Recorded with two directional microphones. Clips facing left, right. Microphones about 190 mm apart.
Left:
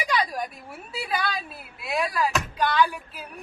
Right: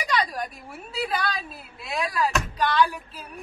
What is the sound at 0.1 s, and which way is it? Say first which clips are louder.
A woman's voice: right 1 dB; 5° left (ahead or behind).